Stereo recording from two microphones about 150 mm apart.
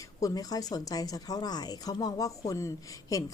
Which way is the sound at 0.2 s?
25° left (ahead or behind).